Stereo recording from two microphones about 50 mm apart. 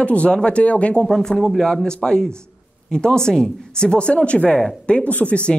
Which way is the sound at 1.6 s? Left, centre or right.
Centre.